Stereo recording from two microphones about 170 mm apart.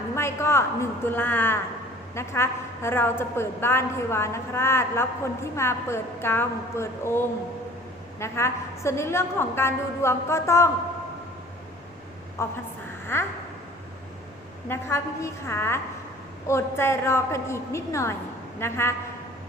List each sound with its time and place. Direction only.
0.2 s a woman's voice: 15° left (ahead or behind)
8.2 s a woman's voice: 15° left (ahead or behind)
12.4 s a woman's voice: 15° left (ahead or behind)
14.7 s a woman's voice: 15° left (ahead or behind)